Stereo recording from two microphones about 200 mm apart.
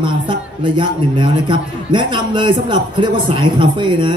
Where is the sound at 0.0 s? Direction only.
25° right (ahead or behind).